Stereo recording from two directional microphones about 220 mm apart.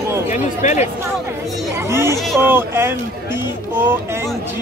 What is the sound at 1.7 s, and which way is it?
Speech, 10° right (ahead or behind).